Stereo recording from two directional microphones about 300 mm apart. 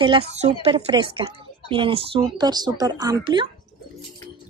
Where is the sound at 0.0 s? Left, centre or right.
Centre.